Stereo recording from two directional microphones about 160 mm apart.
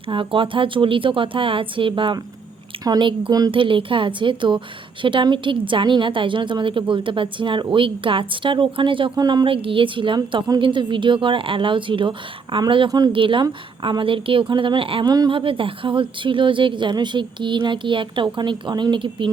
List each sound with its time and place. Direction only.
0.1 s a woman's voice: 30° right (ahead or behind)